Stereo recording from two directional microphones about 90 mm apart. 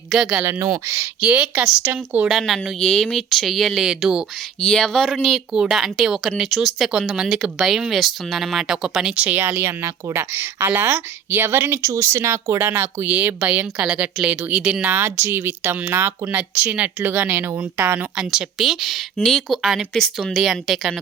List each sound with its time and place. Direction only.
0.1 s speech: 5° right (ahead or behind)
0.9 s speech: 30° right (ahead or behind)
1.2 s speech: 10° right (ahead or behind)
1.8 s speech: 25° right (ahead or behind)
2.7 s speech: 10° left (ahead or behind); by 4.3 s 10° right (ahead or behind)
4.6 s speech: 10° left (ahead or behind)
5.2 s speech: 5° right (ahead or behind)
14.9 s speech: 25° right (ahead or behind)
18.2 s speech: 5° right (ahead or behind)